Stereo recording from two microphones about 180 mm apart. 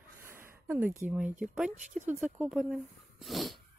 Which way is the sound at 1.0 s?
10° right (ahead or behind).